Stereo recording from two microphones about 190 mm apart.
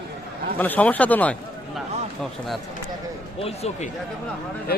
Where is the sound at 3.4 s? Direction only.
35° left (ahead or behind).